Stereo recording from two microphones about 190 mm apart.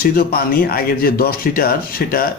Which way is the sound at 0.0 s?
50° left (ahead or behind).